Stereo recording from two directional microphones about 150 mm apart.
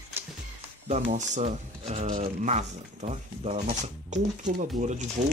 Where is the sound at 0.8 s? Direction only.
50° right (ahead or behind).